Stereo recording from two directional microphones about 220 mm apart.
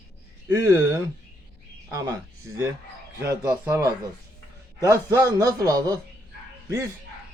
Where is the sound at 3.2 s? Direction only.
15° right (ahead or behind).